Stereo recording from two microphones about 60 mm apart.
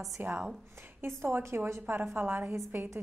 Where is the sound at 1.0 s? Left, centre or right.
Right.